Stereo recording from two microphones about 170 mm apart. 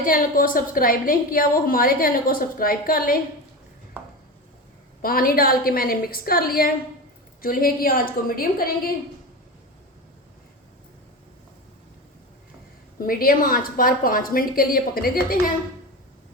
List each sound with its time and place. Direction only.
0.0 s a woman's voice: 55° left (ahead or behind)
5.0 s a woman's voice: 60° left (ahead or behind)
13.0 s a woman's voice: 60° left (ahead or behind)